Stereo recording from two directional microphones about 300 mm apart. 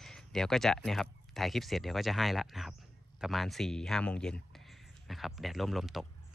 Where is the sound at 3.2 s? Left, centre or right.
Centre.